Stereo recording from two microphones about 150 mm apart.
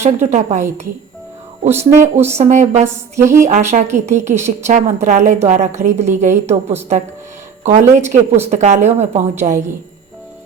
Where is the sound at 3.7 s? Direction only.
50° right (ahead or behind).